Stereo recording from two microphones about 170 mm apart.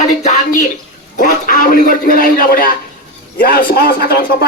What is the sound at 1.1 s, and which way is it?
A man's voice, 50° left (ahead or behind).